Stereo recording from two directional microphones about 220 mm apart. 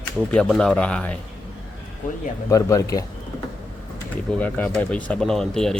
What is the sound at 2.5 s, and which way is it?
Speech, 15° left (ahead or behind).